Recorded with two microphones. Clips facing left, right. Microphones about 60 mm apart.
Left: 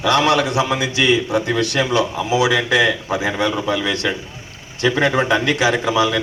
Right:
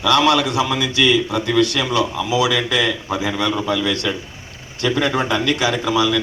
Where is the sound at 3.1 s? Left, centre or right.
Left.